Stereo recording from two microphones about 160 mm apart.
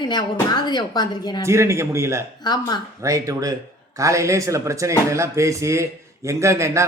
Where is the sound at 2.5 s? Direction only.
25° left (ahead or behind).